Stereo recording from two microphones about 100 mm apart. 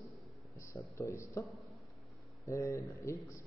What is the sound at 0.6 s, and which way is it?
Speech, 30° left (ahead or behind).